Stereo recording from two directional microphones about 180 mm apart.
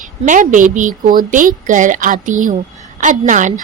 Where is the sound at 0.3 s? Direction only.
45° right (ahead or behind).